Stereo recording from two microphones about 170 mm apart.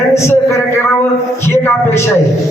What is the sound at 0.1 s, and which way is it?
Speech, 15° left (ahead or behind).